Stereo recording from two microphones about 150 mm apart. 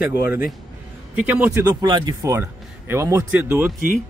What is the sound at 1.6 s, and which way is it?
Speech, 25° right (ahead or behind).